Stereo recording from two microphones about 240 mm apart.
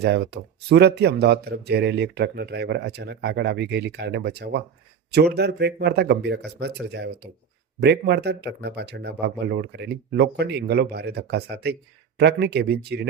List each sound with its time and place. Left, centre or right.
0.0 s speech: right